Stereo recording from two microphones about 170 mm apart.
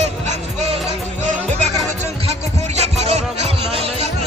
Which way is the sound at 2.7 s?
40° right (ahead or behind).